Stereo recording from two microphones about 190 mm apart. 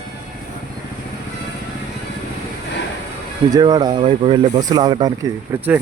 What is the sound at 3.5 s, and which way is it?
Speech, 20° right (ahead or behind).